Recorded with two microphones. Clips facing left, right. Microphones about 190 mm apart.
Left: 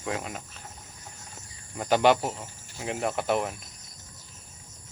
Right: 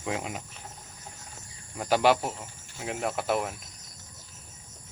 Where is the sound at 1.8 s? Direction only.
5° right (ahead or behind).